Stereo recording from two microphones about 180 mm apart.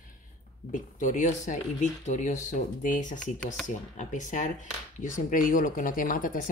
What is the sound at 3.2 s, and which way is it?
Speech, 5° left (ahead or behind).